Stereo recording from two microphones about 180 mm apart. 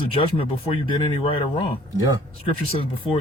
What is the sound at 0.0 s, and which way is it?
Speech, 30° left (ahead or behind).